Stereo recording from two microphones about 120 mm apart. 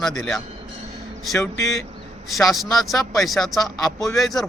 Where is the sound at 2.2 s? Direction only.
Centre (ahead or behind).